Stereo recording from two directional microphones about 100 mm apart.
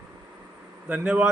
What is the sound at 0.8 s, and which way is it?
Speech, 15° right (ahead or behind).